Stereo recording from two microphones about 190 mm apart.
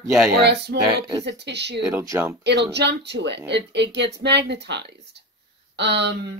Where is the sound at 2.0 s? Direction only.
15° right (ahead or behind).